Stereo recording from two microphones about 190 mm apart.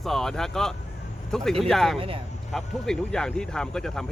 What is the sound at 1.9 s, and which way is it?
Speech, 30° right (ahead or behind).